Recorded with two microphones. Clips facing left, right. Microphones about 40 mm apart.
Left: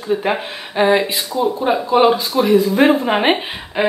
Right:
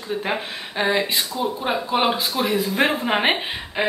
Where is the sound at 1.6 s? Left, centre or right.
Centre.